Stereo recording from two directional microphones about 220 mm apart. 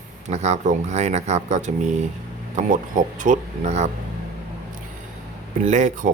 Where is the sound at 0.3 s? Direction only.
30° right (ahead or behind).